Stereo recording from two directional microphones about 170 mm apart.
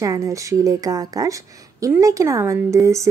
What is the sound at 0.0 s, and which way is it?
Speech, 20° right (ahead or behind).